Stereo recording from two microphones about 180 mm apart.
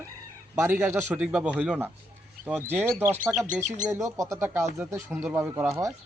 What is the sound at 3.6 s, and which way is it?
Speech, 45° right (ahead or behind).